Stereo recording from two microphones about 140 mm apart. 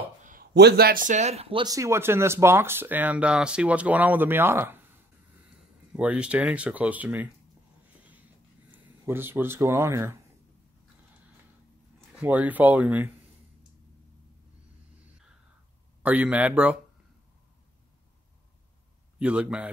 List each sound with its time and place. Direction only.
0.2 s speech: 80° right; by 1.7 s 40° right (ahead or behind)
1.7 s speech: 20° right (ahead or behind)
5.9 s speech: 10° right (ahead or behind)
8.7 s speech: 15° right (ahead or behind)
12.2 s speech: 10° right (ahead or behind)
16.0 s speech: 10° right (ahead or behind)
19.1 s speech: 10° right (ahead or behind)